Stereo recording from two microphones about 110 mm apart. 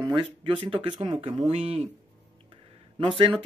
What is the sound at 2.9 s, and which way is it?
Speech, 55° right (ahead or behind).